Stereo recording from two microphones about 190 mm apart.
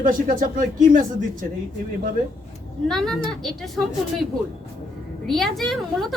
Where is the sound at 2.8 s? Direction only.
Centre (ahead or behind).